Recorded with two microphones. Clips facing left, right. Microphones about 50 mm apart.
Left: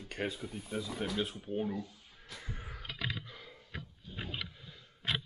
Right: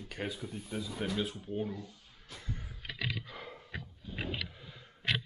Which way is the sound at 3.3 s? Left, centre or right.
Centre.